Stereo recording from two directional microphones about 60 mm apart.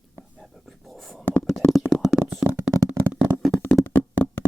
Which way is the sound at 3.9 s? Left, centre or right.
Left.